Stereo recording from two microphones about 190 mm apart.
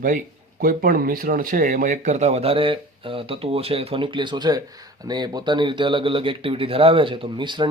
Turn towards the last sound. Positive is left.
turn(degrees=-25)  # may be behind; listen again after turning